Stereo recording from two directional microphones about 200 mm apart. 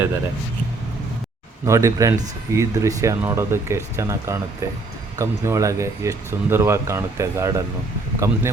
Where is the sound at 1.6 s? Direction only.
15° right (ahead or behind).